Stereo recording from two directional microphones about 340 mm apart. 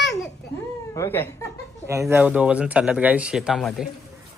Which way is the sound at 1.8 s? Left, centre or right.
Centre.